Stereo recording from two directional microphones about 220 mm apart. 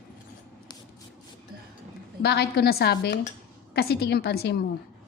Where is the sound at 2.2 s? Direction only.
50° left (ahead or behind).